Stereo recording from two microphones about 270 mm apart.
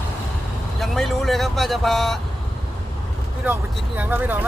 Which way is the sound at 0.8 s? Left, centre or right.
Centre.